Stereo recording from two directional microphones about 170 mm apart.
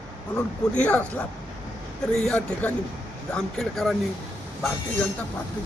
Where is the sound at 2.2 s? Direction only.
5° left (ahead or behind).